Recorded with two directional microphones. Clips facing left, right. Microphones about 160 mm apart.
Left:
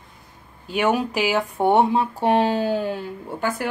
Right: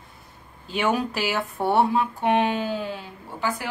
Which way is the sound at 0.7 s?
10° left (ahead or behind).